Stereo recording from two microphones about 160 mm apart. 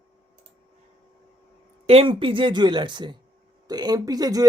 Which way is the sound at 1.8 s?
35° right (ahead or behind).